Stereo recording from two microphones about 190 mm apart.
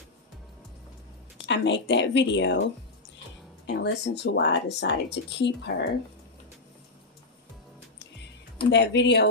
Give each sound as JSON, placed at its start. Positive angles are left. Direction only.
{"t": 1.4, "sound": "speech", "side_deg": 70}
{"t": 8.7, "sound": "speech", "side_deg": 65}